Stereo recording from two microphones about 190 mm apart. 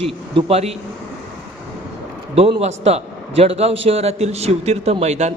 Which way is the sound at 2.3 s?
30° right (ahead or behind).